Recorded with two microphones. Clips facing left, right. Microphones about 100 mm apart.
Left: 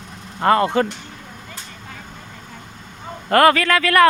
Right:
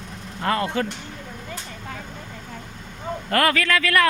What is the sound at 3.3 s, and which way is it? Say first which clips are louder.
Speech: left 7 dB; 45° left (ahead or behind).